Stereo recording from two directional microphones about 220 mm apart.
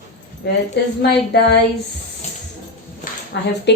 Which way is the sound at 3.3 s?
50° left (ahead or behind).